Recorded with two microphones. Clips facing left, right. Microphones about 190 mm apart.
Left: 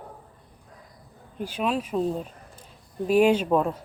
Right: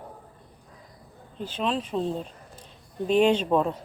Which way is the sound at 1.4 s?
10° left (ahead or behind).